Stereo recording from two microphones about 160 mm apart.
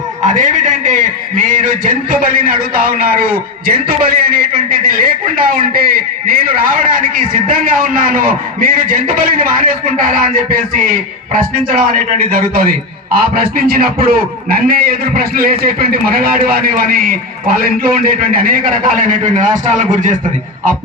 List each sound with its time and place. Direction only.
0.2 s a man's voice: 50° right (ahead or behind)
12.3 s a man's voice: 65° right (ahead or behind)